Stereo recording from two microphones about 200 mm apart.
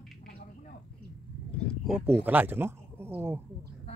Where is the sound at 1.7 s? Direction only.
Centre (ahead or behind).